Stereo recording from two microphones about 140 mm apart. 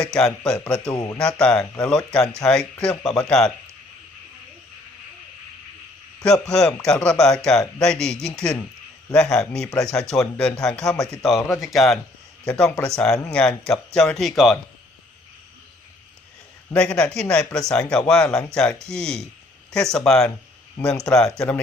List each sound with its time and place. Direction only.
0.0 s speech: 5° left (ahead or behind)
0.9 s speech: 25° left (ahead or behind)
1.2 s a man's voice: 5° left (ahead or behind)
6.5 s speech: 5° left (ahead or behind)
16.7 s a man's voice: 5° left (ahead or behind)